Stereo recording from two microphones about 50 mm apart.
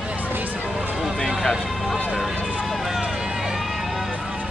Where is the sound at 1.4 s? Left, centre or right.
Centre.